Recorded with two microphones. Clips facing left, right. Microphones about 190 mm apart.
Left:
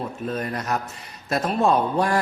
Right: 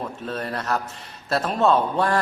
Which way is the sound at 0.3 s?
10° left (ahead or behind).